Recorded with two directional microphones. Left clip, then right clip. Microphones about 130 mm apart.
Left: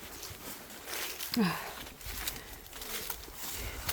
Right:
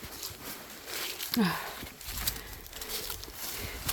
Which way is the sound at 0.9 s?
Centre (ahead or behind).